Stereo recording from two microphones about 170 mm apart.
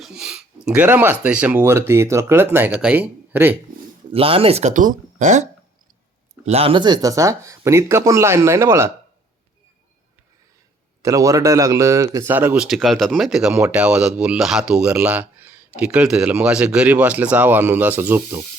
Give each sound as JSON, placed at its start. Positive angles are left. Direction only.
{"t": 0.0, "sound": "a sound", "side_deg": -5}
{"t": 1.2, "sound": "speech", "side_deg": -10}
{"t": 4.1, "sound": "speech", "side_deg": -35}
{"t": 11.0, "sound": "speech", "side_deg": -20}